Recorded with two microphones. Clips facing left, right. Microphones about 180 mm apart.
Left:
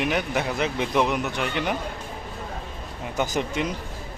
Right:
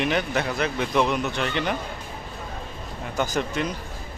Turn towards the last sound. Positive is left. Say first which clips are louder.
# even
turn(degrees=20)  # may be behind; listen again after turning